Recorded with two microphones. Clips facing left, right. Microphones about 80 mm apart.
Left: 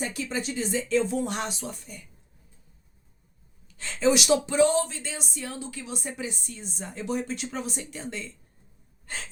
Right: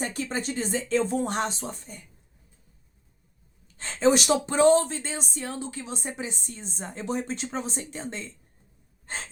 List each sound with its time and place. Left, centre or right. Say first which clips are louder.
0.0 s speech: right 1 dB; right
3.8 s speech: right 1 dB; right
9.0 s gasp: right 2 dB; right